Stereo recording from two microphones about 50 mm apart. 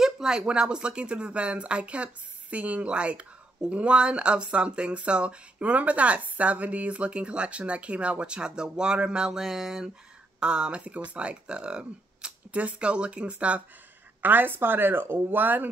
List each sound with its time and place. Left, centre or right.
0.0 s speech: centre
9.4 s speech: centre
10.4 s speech: centre
14.2 s speech: right
15.4 s speech: right